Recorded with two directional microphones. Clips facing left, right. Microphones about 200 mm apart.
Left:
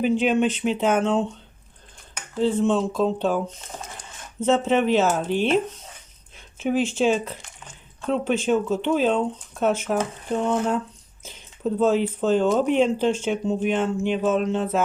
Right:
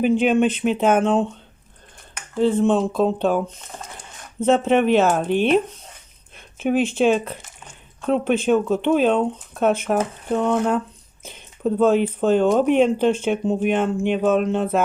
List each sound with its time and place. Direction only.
0.0 s speech: 55° right (ahead or behind)
2.4 s speech: 55° right (ahead or behind)